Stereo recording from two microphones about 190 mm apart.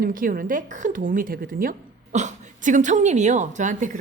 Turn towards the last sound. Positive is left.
turn(degrees=-40)  # may be behind; listen again after turning